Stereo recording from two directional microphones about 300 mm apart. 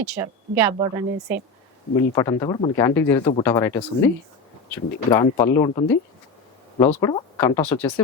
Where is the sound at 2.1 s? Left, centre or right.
Centre.